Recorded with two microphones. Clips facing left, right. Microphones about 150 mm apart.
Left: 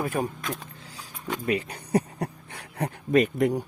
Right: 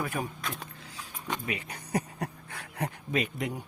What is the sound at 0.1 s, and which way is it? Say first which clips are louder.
Speech: left 6 dB; 45° left (ahead or behind).